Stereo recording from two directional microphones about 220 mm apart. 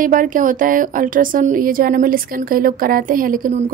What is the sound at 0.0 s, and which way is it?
A woman's voice, 35° right (ahead or behind).